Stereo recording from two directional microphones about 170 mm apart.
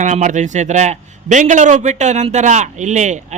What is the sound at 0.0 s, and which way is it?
A man's voice, 45° right (ahead or behind).